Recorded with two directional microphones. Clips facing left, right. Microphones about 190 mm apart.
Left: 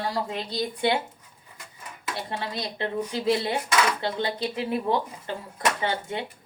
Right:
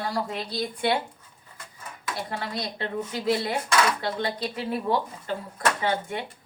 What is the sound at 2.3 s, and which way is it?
A woman's voice, 20° left (ahead or behind).